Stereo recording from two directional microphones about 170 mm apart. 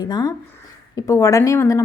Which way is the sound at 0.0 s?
20° left (ahead or behind).